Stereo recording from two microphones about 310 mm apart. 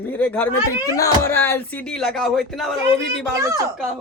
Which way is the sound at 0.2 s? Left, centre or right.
Centre.